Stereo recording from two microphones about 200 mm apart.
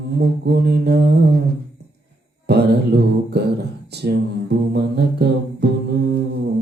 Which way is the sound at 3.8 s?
55° right (ahead or behind).